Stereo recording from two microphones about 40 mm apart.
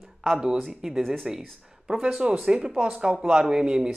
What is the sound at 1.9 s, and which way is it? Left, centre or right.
Speech, right.